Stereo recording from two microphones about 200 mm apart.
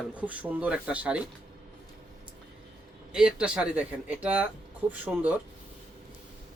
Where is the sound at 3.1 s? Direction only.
5° right (ahead or behind).